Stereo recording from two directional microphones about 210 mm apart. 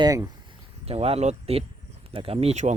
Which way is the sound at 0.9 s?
30° right (ahead or behind).